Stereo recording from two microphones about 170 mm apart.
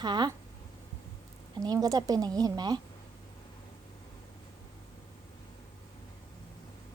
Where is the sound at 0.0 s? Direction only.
25° right (ahead or behind).